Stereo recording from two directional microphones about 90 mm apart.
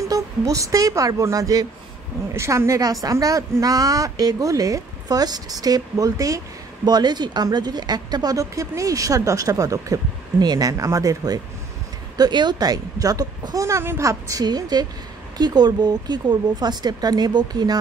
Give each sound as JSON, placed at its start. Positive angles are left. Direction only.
{"t": 0.1, "sound": "a woman's voice", "side_deg": -35}
{"t": 12.2, "sound": "speech", "side_deg": -55}
{"t": 14.4, "sound": "speech", "side_deg": -50}